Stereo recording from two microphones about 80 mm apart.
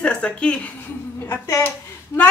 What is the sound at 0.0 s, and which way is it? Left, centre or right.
Speech, centre.